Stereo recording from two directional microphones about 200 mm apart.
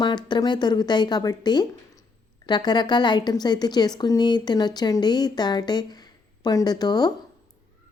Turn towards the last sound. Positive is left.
turn(degrees=20)  # may be behind; listen again after turning